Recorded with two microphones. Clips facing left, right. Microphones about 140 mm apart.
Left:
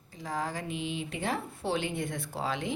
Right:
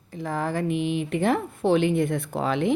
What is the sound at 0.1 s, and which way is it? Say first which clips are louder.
Speech: right 7 dB; 55° right (ahead or behind).